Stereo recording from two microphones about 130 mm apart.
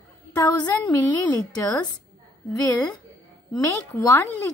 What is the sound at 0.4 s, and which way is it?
A woman's voice, 30° left (ahead or behind).